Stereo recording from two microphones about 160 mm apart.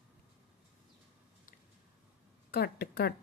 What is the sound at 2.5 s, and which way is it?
Speech, 85° left.